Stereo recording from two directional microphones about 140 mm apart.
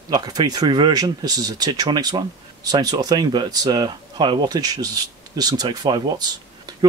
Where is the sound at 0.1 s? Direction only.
30° right (ahead or behind).